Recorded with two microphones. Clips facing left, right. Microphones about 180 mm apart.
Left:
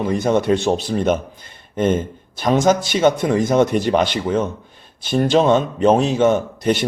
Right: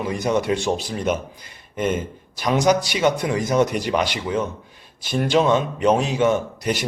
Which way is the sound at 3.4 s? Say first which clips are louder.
Left 3 dB; 25° left (ahead or behind).